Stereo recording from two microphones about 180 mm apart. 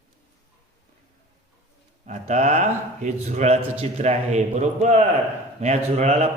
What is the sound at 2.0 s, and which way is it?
A man's voice, 40° right (ahead or behind).